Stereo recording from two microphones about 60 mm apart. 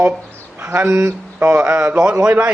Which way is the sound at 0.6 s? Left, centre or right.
Right.